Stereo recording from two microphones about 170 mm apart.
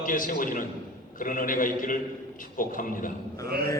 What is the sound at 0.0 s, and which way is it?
A man's voice, 55° left (ahead or behind).